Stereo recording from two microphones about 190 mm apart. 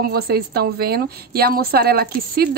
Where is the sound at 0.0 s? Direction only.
55° right (ahead or behind).